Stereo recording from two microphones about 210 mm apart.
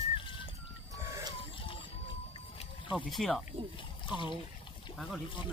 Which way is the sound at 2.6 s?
25° left (ahead or behind).